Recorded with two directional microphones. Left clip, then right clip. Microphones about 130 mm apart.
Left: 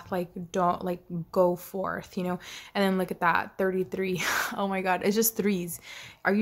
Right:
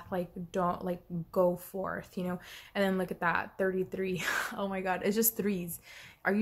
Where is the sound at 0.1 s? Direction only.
25° left (ahead or behind).